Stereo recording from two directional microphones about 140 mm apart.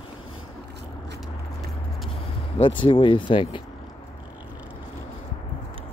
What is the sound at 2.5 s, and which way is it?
Speech, 35° left (ahead or behind).